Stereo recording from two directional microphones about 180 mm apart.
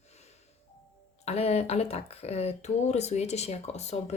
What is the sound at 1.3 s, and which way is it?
Speech, 35° left (ahead or behind).